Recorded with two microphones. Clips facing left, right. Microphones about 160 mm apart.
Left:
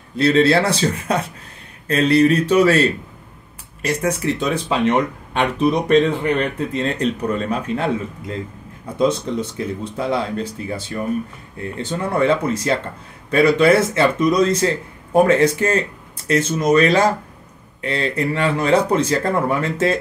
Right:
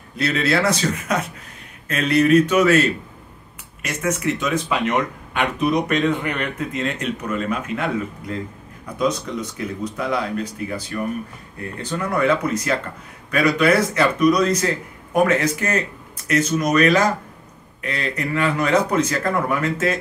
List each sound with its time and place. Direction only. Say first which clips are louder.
0.2 s speech: left 5 dB; 30° left (ahead or behind)